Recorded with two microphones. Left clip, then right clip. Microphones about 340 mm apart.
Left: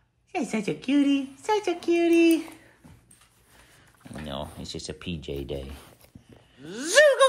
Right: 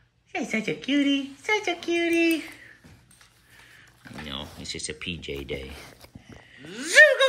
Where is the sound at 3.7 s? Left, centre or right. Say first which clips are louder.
Right 1 dB; centre.